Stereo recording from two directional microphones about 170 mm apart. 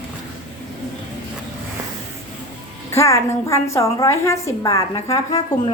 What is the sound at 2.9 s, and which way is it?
A woman's voice, 15° left (ahead or behind).